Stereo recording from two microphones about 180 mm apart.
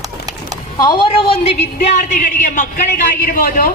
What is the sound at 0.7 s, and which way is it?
Speech, 25° left (ahead or behind).